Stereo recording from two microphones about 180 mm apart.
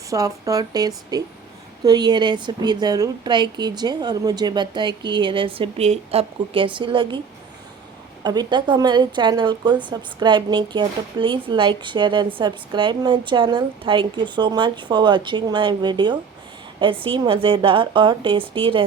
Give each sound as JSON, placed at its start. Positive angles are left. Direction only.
{"t": 0.1, "sound": "a woman's voice", "side_deg": -20}
{"t": 8.2, "sound": "a woman's voice", "side_deg": -25}